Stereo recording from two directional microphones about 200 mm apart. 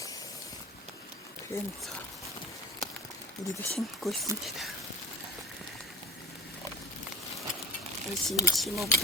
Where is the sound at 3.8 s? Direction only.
Centre (ahead or behind).